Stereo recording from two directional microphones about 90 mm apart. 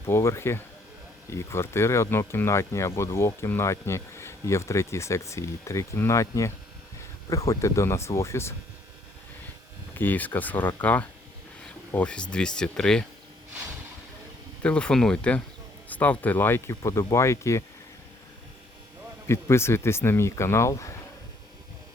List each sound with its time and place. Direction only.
0.0 s speech: 30° left (ahead or behind)
9.9 s speech: 20° left (ahead or behind)
14.6 s speech: 10° left (ahead or behind); by 17.6 s 35° left (ahead or behind)
19.3 s speech: 30° left (ahead or behind)